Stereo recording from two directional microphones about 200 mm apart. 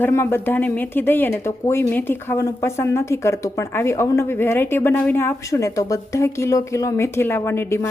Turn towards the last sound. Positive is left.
turn(degrees=15)  # may be behind; listen again after turning